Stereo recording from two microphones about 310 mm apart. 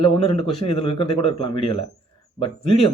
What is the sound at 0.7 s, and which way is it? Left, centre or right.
Speech, centre.